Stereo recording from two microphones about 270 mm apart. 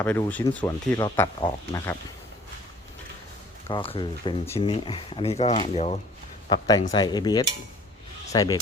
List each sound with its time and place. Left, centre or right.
0.0 s speech: centre
3.7 s speech: centre